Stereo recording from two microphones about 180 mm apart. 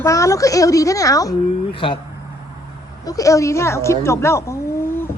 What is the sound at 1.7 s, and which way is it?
Speech, 30° left (ahead or behind).